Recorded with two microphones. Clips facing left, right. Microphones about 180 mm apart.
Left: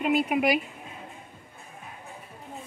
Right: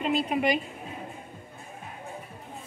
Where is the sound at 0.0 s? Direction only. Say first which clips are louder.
Left 2 dB; 10° left (ahead or behind).